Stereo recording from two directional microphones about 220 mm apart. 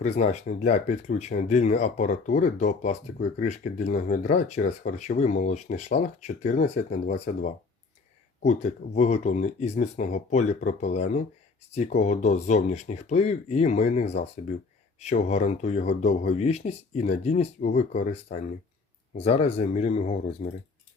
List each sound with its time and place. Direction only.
0.0 s speech: 30° left (ahead or behind)